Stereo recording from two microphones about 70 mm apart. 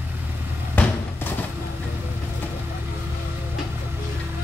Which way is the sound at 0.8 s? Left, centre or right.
Left.